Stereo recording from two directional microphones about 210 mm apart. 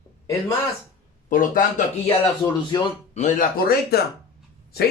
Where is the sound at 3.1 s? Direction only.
40° left (ahead or behind).